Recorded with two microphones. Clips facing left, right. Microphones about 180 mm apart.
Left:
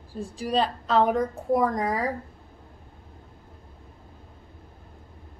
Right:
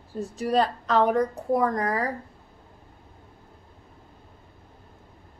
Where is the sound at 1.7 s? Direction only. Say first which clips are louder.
Even; 15° left (ahead or behind).